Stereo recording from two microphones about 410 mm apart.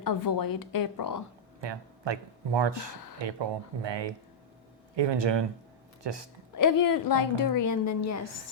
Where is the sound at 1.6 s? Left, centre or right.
Right.